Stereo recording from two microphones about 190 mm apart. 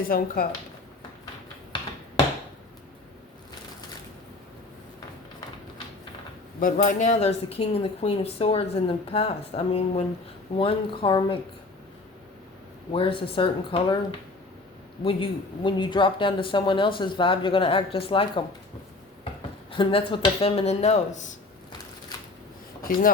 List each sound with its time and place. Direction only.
0.1 s speech: 50° left (ahead or behind)
6.6 s speech: 45° left (ahead or behind); by 11.3 s 25° left (ahead or behind)
12.9 s speech: 30° left (ahead or behind)
15.0 s speech: 25° left (ahead or behind)
19.7 s speech: 25° left (ahead or behind)
22.8 s speech: 50° left (ahead or behind)